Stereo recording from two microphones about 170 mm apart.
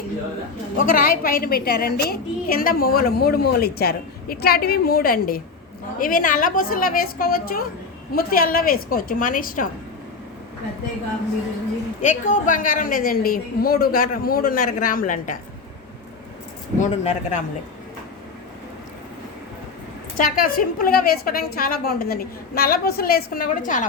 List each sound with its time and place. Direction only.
0.8 s a woman's voice: 55° left (ahead or behind)
12.0 s a woman's voice: 45° left (ahead or behind)
16.8 s speech: 45° left (ahead or behind)
20.1 s a woman's voice: 55° left (ahead or behind)